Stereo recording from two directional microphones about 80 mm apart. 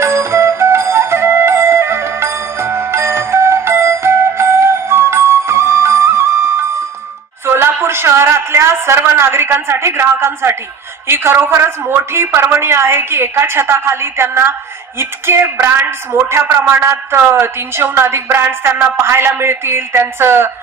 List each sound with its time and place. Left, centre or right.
0.0 s music: right
7.4 s a sound: right
11.1 s a woman's voice: right